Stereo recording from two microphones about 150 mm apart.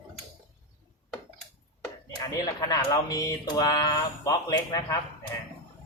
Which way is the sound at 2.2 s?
25° left (ahead or behind).